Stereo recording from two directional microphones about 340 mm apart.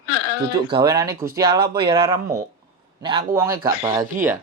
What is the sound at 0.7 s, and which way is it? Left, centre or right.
Speech, centre.